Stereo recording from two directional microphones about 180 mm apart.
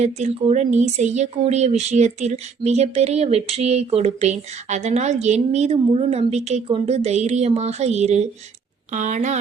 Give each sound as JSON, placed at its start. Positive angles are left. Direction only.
{"t": 0.0, "sound": "speech", "side_deg": -40}